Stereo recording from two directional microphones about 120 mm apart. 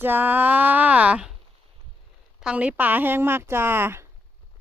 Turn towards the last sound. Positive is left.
turn(degrees=-20)  # may be behind; listen again after turning